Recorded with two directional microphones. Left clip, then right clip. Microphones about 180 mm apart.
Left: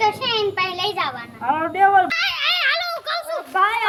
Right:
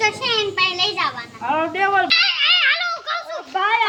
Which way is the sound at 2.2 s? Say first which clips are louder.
Right 4 dB; 50° left (ahead or behind).